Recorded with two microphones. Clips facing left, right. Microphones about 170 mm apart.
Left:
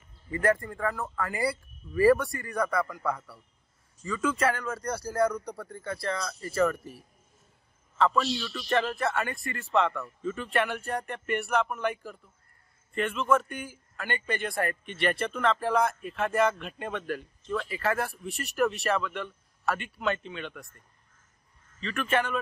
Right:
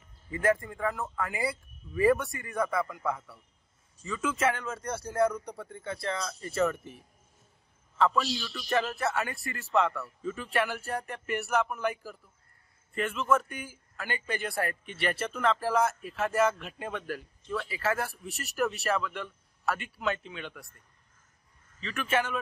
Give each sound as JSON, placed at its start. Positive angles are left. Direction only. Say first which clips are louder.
{"t": 0.3, "sound": "speech", "louder": "left 1 dB", "side_deg": -5}
{"t": 2.0, "sound": "speech", "louder": "left 3 dB", "side_deg": -20}
{"t": 2.5, "sound": "speech", "louder": "left 1 dB", "side_deg": -5}
{"t": 4.0, "sound": "speech", "louder": "left 2 dB", "side_deg": -20}
{"t": 5.6, "sound": "speech", "louder": "left 2 dB", "side_deg": 0}
{"t": 6.2, "sound": "speech", "louder": "left 2 dB", "side_deg": -20}
{"t": 8.0, "sound": "speech", "louder": "left 1 dB", "side_deg": -5}
{"t": 21.8, "sound": "speech", "louder": "left 2 dB", "side_deg": -5}